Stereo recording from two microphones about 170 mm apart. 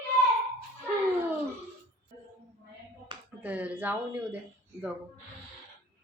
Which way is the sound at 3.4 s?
10° right (ahead or behind).